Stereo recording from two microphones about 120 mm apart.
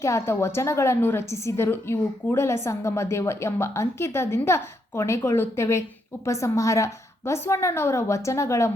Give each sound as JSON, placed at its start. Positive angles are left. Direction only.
{"t": 0.0, "sound": "a woman's voice", "side_deg": 25}